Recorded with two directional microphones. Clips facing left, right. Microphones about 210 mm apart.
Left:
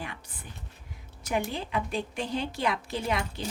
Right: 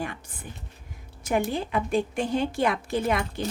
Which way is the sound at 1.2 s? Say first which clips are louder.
Right 5 dB; 50° right (ahead or behind).